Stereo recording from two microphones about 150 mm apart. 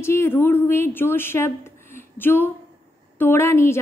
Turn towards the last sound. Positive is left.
turn(degrees=15)  # may be behind; listen again after turning